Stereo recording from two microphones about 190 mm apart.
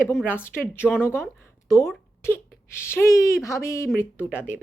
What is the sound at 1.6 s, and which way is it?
Speech, 15° left (ahead or behind).